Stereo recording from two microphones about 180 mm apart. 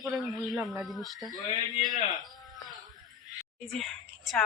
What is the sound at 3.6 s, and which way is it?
Speech, centre (ahead or behind).